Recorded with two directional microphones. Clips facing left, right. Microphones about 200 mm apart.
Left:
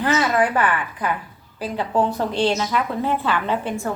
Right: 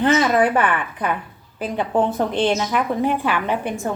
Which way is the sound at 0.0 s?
20° right (ahead or behind).